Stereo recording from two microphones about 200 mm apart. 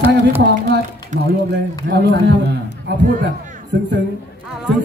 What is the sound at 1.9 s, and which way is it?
Speech, 60° right (ahead or behind).